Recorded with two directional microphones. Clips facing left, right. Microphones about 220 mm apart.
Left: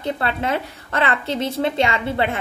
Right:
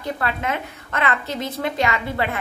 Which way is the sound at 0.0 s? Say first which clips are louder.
Left 2 dB; 30° left (ahead or behind).